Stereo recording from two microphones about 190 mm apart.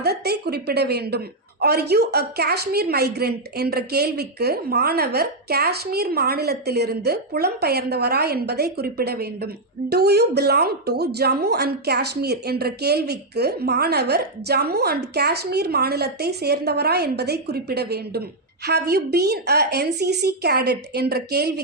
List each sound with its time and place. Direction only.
0.0 s a woman's voice: 60° right (ahead or behind)